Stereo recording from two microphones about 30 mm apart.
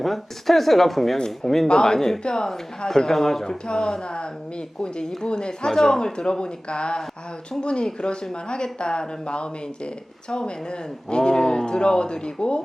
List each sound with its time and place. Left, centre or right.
0.0 s a woman's voice: centre
3.7 s a woman's voice: left
6.4 s speech: left